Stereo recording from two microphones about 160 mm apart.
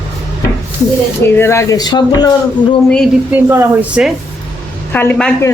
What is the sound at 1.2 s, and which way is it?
Speech, 15° left (ahead or behind).